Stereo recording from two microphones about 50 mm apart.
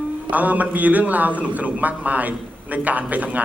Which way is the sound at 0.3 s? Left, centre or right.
Right.